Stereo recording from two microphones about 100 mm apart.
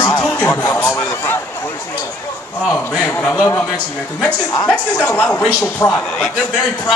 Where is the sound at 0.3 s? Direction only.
20° left (ahead or behind).